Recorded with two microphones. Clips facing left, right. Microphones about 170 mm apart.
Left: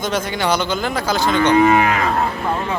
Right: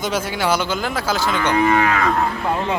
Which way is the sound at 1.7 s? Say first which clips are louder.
Left 2 dB; 20° left (ahead or behind).